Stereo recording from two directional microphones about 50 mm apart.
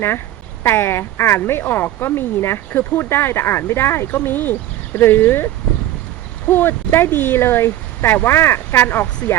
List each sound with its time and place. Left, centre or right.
0.6 s speech: left
6.5 s speech: left